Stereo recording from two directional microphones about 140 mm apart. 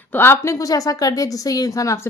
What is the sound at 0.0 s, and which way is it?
A woman's voice, 15° left (ahead or behind).